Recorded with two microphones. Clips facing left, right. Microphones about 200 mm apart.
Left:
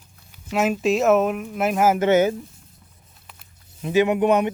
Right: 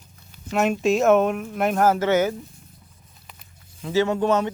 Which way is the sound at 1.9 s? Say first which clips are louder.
Left 3 dB; 20° left (ahead or behind).